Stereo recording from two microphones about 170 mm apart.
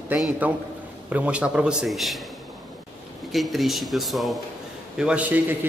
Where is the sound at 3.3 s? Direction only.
Centre (ahead or behind).